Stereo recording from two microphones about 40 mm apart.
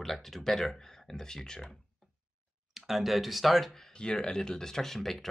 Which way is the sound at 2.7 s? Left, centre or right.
Centre.